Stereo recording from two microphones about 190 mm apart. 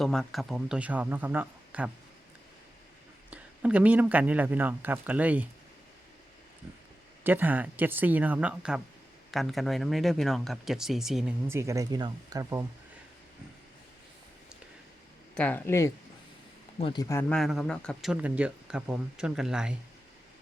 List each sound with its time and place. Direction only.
0.0 s speech: centre (ahead or behind)
3.2 s speech: 5° right (ahead or behind)
7.3 s speech: 10° right (ahead or behind)
11.4 s speech: 15° right (ahead or behind)
15.4 s speech: 10° left (ahead or behind)